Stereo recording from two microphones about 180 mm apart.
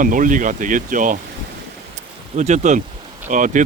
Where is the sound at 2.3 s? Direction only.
40° right (ahead or behind).